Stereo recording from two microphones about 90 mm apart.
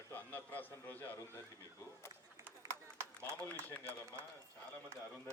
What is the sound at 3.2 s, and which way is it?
Speech, 20° left (ahead or behind).